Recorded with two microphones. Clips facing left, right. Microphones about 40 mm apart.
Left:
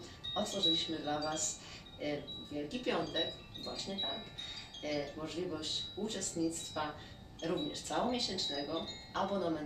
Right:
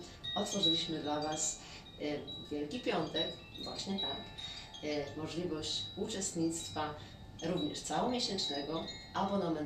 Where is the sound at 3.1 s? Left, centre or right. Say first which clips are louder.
Even; centre.